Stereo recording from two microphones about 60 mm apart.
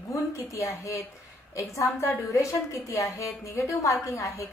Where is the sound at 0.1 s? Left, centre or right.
Left.